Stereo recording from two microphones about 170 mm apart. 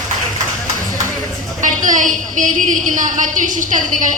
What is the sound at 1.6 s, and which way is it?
A woman's voice, 50° right (ahead or behind).